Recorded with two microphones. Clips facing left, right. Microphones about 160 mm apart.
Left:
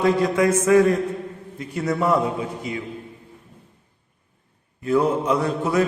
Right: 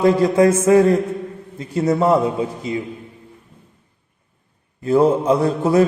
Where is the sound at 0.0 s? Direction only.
30° right (ahead or behind).